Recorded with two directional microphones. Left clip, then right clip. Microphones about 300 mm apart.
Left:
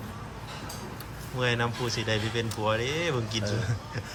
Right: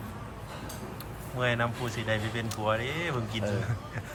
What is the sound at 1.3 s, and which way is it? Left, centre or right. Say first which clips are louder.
Speech: left 1 dB; centre.